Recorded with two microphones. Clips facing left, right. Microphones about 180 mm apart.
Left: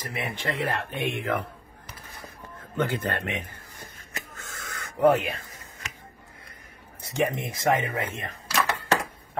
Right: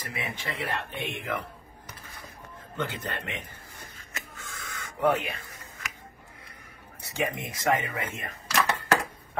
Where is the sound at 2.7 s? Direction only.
50° left (ahead or behind).